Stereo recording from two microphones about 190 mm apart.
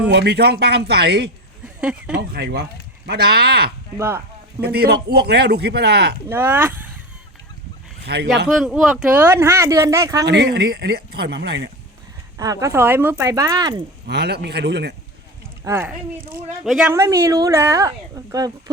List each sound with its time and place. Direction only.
0.1 s speech: 60° right (ahead or behind)
1.6 s speech: 5° right (ahead or behind)
2.3 s speech: 60° right (ahead or behind)
3.9 s speech: 10° right (ahead or behind)
4.6 s speech: 55° right (ahead or behind)
6.2 s speech: 10° right (ahead or behind)
8.0 s speech: 60° right (ahead or behind)
8.4 s speech: centre (ahead or behind); by 10.2 s 15° right (ahead or behind)
10.2 s speech: 60° right (ahead or behind)
12.4 s speech: 15° right (ahead or behind)
14.1 s speech: 60° right (ahead or behind)
15.6 s speech: 15° right (ahead or behind)
16.6 s speech: centre (ahead or behind)
16.9 s speech: 15° right (ahead or behind)